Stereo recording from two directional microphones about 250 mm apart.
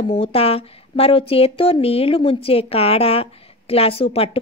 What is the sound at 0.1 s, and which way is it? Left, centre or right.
A woman's voice, left.